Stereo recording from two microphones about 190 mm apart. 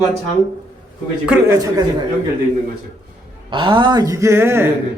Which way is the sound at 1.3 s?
15° right (ahead or behind).